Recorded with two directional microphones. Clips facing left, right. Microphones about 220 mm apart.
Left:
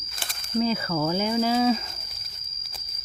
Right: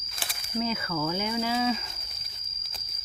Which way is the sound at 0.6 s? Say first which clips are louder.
Left 5 dB; 35° left (ahead or behind).